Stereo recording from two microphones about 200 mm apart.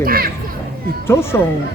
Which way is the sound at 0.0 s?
45° right (ahead or behind).